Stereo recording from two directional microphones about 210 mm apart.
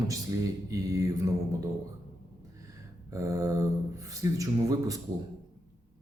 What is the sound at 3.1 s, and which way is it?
Mantra, 15° right (ahead or behind).